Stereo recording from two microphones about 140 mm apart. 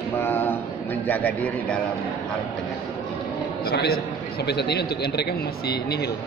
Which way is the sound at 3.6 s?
90° left.